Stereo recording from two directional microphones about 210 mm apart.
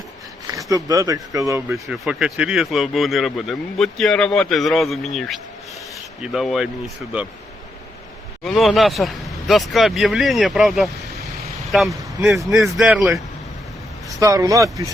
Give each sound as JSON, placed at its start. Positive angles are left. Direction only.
{"t": 0.5, "sound": "speech", "side_deg": -15}
{"t": 1.9, "sound": "speech", "side_deg": -5}
{"t": 8.4, "sound": "speech", "side_deg": 0}
{"t": 14.2, "sound": "speech", "side_deg": -15}